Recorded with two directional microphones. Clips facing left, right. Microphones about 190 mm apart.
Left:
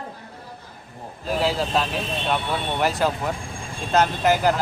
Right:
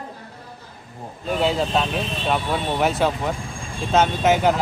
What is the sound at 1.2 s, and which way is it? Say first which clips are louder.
Speech: right 2 dB; centre (ahead or behind).